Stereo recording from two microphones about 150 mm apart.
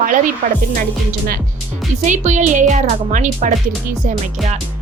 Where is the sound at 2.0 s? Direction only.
55° right (ahead or behind).